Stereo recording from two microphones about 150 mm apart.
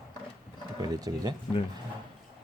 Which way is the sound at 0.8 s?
25° right (ahead or behind).